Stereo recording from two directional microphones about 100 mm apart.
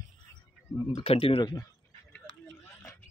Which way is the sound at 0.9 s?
70° left (ahead or behind).